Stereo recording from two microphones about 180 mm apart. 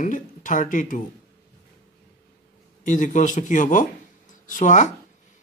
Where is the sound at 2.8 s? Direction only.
45° left (ahead or behind).